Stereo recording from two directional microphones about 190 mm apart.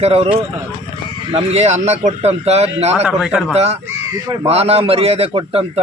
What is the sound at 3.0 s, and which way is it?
Speech, 5° right (ahead or behind).